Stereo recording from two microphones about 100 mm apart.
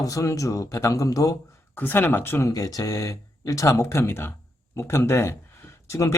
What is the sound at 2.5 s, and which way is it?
Speech, 35° left (ahead or behind).